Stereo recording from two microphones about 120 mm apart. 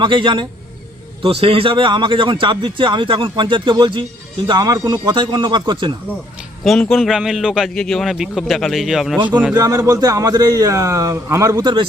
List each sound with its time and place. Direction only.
0.0 s a man's voice: 45° right (ahead or behind)
4.4 s speech: 35° right (ahead or behind)
6.7 s a man's voice: centre (ahead or behind)
9.6 s a man's voice: 30° right (ahead or behind)